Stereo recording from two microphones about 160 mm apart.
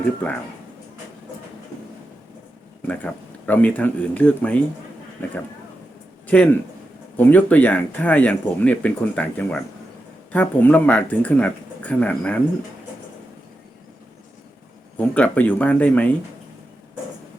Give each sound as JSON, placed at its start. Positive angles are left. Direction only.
{"t": 0.2, "sound": "speech", "side_deg": 10}
{"t": 2.8, "sound": "a man's voice", "side_deg": 10}
{"t": 14.9, "sound": "speech", "side_deg": 10}